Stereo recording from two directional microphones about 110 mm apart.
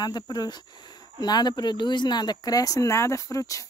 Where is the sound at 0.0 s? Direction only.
40° left (ahead or behind).